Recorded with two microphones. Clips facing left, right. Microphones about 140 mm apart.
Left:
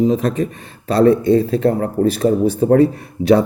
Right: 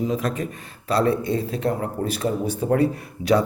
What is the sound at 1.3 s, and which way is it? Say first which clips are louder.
Speech: left 9 dB; 50° left (ahead or behind).